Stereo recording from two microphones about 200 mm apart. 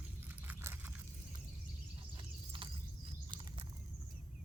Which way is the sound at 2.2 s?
25° right (ahead or behind).